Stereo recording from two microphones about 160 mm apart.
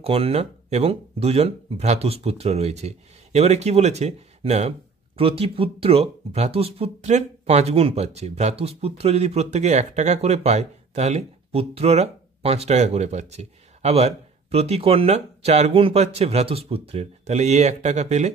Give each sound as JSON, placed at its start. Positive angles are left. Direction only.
{"t": 0.0, "sound": "speech", "side_deg": -35}